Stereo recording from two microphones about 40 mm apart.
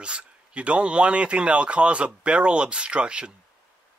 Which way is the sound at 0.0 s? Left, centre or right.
Right.